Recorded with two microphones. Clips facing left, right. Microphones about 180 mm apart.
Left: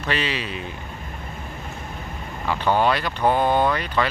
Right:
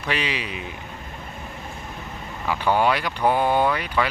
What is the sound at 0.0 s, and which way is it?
Speech, 15° right (ahead or behind).